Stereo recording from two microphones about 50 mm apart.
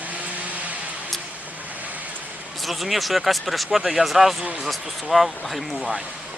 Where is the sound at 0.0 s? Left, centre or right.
Right.